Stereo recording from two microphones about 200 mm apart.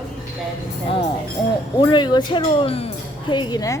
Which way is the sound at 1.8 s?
20° left (ahead or behind).